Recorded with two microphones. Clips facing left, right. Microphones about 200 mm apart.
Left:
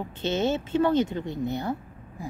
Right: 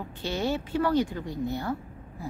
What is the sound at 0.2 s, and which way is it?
A woman's voice, 20° left (ahead or behind).